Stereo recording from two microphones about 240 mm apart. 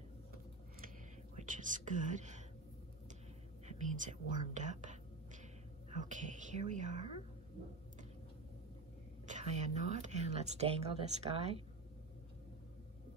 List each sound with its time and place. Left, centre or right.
1.3 s speech: right
3.6 s speech: right
9.2 s speech: right